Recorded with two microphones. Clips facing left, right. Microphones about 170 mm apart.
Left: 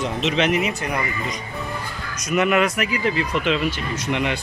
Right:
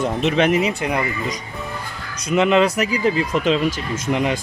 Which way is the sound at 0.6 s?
20° right (ahead or behind).